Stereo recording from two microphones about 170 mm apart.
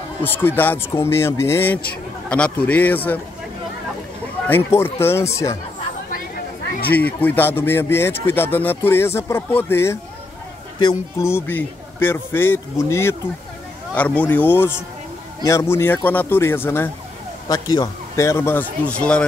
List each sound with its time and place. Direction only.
0.2 s speech: 10° left (ahead or behind)
4.5 s speech: 15° left (ahead or behind)
7.0 s speech: 10° left (ahead or behind)
10.8 s speech: 25° left (ahead or behind)
11.2 s speech: 15° left (ahead or behind)